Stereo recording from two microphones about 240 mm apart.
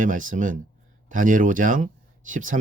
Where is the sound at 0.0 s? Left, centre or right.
Right.